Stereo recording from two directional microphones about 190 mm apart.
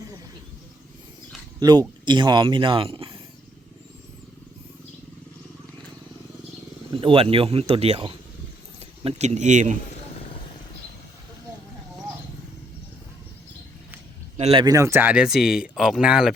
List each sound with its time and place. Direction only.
1.5 s speech: 20° right (ahead or behind)
6.9 s speech: 30° right (ahead or behind)
14.3 s speech: 35° right (ahead or behind)
14.6 s speech: 15° right (ahead or behind)